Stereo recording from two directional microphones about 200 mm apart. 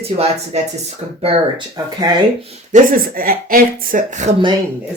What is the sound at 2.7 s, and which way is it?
Speech, 45° right (ahead or behind).